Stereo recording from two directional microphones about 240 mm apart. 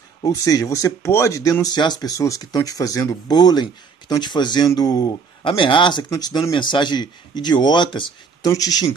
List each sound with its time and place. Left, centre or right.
0.2 s a man's voice: centre